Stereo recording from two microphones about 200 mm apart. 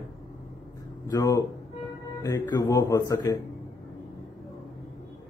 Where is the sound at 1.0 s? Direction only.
15° left (ahead or behind).